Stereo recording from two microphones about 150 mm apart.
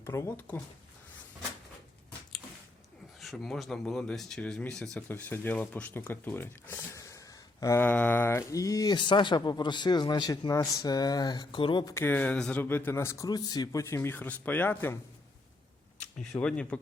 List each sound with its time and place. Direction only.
0.0 s speech: 15° left (ahead or behind)
3.2 s speech: centre (ahead or behind); by 11.9 s 30° left (ahead or behind)
11.9 s speech: 15° left (ahead or behind)
16.4 s speech: 5° left (ahead or behind)